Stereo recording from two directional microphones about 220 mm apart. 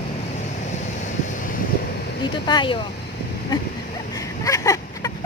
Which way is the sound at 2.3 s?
20° left (ahead or behind).